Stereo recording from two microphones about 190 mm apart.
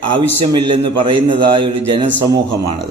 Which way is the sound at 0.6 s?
25° right (ahead or behind).